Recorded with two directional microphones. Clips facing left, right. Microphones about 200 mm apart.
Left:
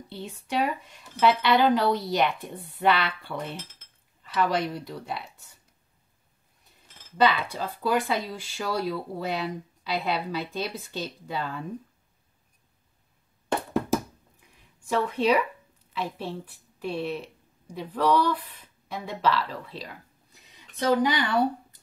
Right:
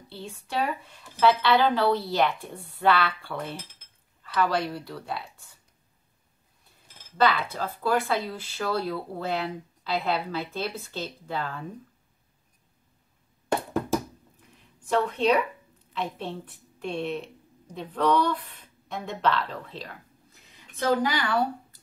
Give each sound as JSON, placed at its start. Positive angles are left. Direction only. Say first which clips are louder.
{"t": 0.1, "sound": "speech", "louder": "left 2 dB", "side_deg": 20}
{"t": 7.2, "sound": "speech", "louder": "even", "side_deg": 15}
{"t": 14.9, "sound": "a woman's voice", "louder": "even", "side_deg": 10}